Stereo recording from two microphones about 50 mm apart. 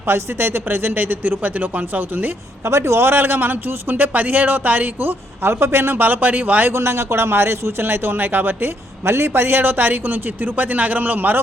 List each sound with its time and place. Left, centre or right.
0.1 s a man's voice: right
2.6 s a man's voice: right
6.7 s a man's voice: right